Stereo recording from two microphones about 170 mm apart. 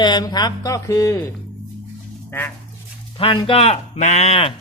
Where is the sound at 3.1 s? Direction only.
30° left (ahead or behind).